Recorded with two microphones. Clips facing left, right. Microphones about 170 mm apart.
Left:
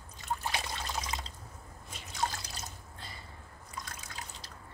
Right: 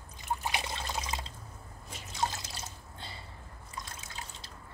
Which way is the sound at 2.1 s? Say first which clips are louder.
Right 1 dB; 25° right (ahead or behind).